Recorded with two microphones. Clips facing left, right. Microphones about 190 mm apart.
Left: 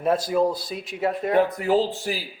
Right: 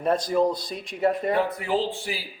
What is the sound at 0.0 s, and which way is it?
A man's voice, 5° left (ahead or behind).